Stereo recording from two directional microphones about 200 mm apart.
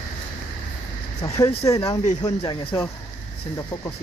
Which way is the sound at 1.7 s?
15° left (ahead or behind).